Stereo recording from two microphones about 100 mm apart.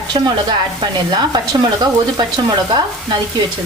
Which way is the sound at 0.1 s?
50° right (ahead or behind).